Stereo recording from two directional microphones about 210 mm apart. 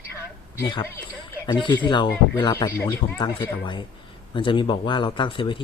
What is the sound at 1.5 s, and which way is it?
Speech, 20° left (ahead or behind).